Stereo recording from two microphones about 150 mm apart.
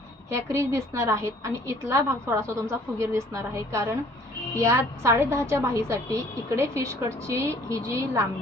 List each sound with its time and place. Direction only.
0.3 s a woman's voice: 20° right (ahead or behind)